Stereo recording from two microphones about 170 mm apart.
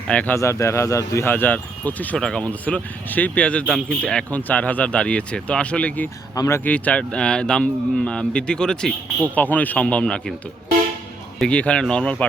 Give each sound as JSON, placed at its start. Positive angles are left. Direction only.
{"t": 0.1, "sound": "speech", "side_deg": 10}
{"t": 6.3, "sound": "speech", "side_deg": 20}
{"t": 6.7, "sound": "speech", "side_deg": 10}
{"t": 11.3, "sound": "speech", "side_deg": 5}